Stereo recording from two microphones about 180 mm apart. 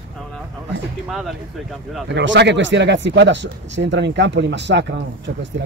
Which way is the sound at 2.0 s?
80° right.